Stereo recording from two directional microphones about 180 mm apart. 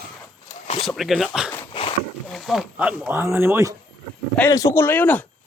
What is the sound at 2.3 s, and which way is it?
Speech, centre (ahead or behind).